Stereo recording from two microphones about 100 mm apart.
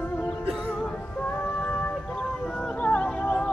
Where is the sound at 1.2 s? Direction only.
15° left (ahead or behind).